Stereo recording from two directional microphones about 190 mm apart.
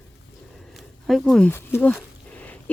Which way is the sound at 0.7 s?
Centre (ahead or behind).